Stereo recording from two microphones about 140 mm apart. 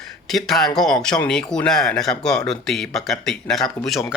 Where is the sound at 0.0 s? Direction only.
Centre (ahead or behind).